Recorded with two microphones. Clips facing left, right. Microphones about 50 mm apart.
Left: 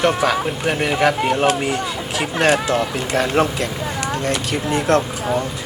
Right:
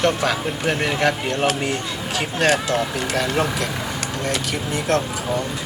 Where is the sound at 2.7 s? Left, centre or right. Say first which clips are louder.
Left 2 dB; left.